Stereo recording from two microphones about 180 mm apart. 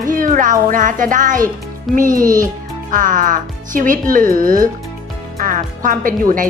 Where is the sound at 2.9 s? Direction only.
45° right (ahead or behind).